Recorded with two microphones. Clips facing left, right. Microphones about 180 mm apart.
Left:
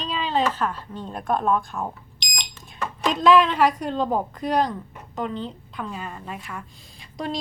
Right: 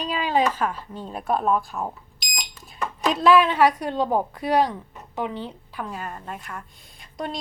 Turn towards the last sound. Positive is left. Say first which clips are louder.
# left 2 dB
turn(degrees=0)  # may be behind; listen again after turning